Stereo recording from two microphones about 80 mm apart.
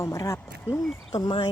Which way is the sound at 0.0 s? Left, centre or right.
Left.